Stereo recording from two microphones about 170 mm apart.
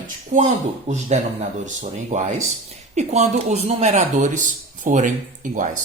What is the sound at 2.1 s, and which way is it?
Speech, 45° right (ahead or behind).